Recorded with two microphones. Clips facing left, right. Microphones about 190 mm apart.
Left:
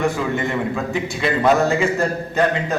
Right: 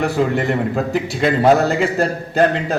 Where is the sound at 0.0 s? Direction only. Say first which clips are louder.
Right 3 dB; 40° right (ahead or behind).